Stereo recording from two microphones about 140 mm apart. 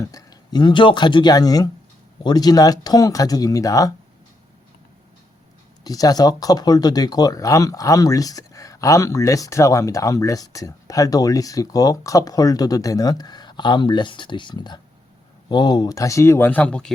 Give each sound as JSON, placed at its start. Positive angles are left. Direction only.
{"t": 0.0, "sound": "speech", "side_deg": 25}
{"t": 5.8, "sound": "speech", "side_deg": 25}